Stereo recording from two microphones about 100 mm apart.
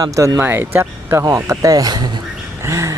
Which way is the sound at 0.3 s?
20° right (ahead or behind).